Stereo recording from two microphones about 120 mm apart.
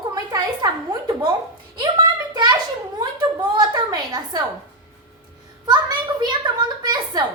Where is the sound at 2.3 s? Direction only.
35° right (ahead or behind).